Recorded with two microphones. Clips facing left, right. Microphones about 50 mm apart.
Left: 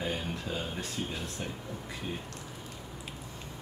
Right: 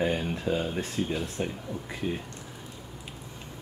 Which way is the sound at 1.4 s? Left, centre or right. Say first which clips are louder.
Right 7 dB; centre.